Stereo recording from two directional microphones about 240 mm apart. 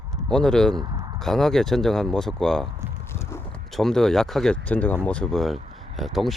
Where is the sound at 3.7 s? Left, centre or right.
Centre.